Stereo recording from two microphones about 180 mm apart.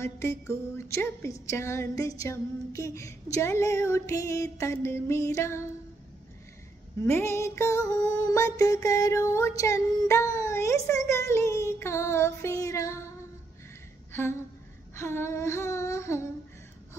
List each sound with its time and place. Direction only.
0.0 s music: 15° left (ahead or behind)
7.1 s music: 15° left (ahead or behind)
14.1 s a woman's voice: 15° left (ahead or behind)
15.0 s music: 15° left (ahead or behind)